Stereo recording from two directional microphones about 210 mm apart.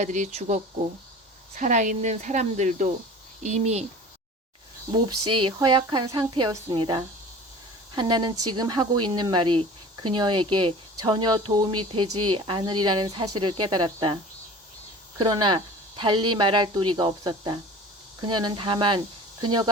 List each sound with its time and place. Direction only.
0.0 s speech: 35° right (ahead or behind)
5.0 s speech: 90° right
5.3 s speech: 25° right (ahead or behind)
12.0 s speech: 90° right
12.5 s speech: 20° right (ahead or behind)
15.2 s speech: 20° right (ahead or behind)